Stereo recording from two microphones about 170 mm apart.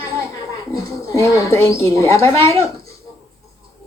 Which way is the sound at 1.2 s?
15° left (ahead or behind).